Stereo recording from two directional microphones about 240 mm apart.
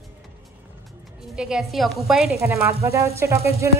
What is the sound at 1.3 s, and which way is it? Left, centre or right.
A woman's voice, centre.